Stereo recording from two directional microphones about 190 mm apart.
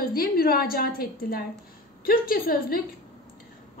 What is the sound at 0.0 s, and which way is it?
A woman's voice, 50° left (ahead or behind).